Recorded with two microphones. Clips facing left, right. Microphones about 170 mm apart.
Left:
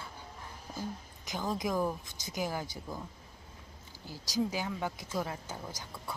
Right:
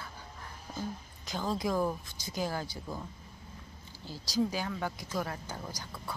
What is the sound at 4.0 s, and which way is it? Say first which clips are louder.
Speech: right 2 dB; 15° left (ahead or behind).